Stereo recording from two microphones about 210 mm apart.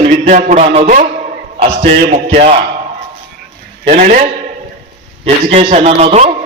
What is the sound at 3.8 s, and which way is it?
Speech, 40° right (ahead or behind).